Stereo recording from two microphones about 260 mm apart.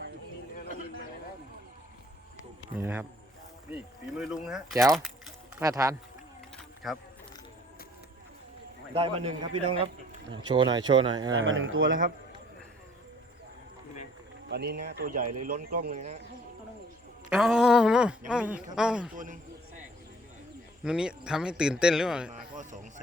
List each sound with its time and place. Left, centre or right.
2.7 s speech: centre
5.6 s speech: centre
6.8 s a man's voice: centre
9.0 s speech: right
11.3 s speech: right
14.5 s speech: right
17.2 s a man's voice: centre
19.1 s speech: right
20.8 s a man's voice: centre
22.5 s speech: right